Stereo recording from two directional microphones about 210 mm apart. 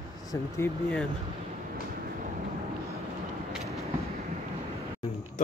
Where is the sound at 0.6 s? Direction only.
10° left (ahead or behind).